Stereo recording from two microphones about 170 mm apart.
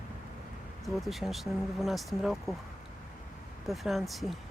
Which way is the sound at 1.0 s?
Centre (ahead or behind).